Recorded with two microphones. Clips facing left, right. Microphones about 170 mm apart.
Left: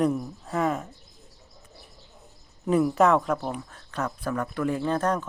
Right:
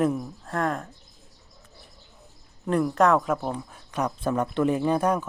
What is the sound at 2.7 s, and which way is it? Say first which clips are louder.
Speech: left 1 dB; 5° left (ahead or behind).